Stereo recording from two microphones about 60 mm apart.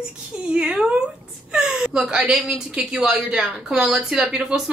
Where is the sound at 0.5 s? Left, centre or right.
Centre.